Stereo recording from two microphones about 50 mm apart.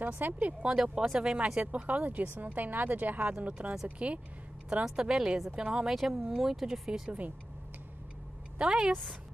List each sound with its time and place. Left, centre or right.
0.0 s speech: right
1.0 s speech: centre; by 3.4 s right
3.4 s a woman's voice: right
4.8 s speech: centre
5.9 s speech: centre
6.9 s a woman's voice: right
8.6 s speech: centre